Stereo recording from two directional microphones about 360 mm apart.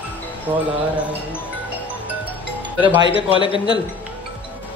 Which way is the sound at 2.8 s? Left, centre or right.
Centre.